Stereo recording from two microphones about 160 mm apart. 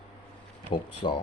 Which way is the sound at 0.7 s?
30° left (ahead or behind).